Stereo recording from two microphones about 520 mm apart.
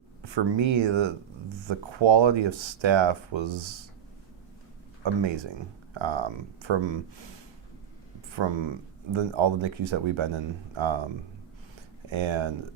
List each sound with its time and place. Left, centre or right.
0.2 s speech: right
5.0 s speech: right
8.3 s speech: right
12.1 s speech: right